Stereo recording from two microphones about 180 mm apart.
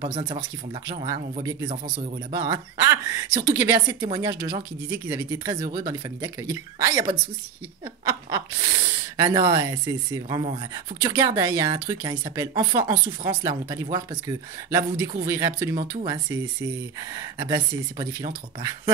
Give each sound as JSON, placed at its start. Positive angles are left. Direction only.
{"t": 0.0, "sound": "speech", "side_deg": -20}
{"t": 1.4, "sound": "speech", "side_deg": -20}
{"t": 8.0, "sound": "a sound", "side_deg": -20}
{"t": 9.1, "sound": "speech", "side_deg": -20}
{"t": 17.4, "sound": "speech", "side_deg": -20}